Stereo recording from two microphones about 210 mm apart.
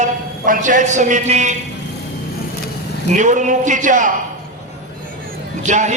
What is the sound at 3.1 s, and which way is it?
Speech, 35° right (ahead or behind).